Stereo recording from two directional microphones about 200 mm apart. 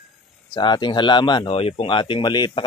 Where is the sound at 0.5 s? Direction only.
25° left (ahead or behind).